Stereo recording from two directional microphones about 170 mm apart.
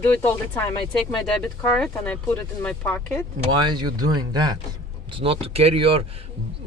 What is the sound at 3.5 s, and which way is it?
Speech, 25° right (ahead or behind).